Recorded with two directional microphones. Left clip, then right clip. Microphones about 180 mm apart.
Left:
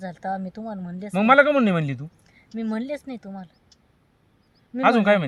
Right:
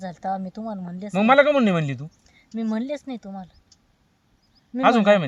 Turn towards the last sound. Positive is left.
turn(degrees=0)  # may be behind; listen again after turning